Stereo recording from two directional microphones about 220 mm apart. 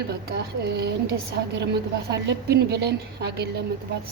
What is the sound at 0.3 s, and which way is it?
A woman's voice, 45° right (ahead or behind).